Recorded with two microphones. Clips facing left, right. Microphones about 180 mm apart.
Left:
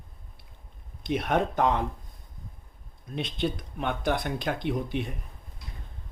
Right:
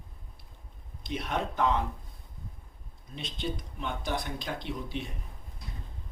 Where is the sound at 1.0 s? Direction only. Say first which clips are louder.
Left 7 dB; 55° left (ahead or behind).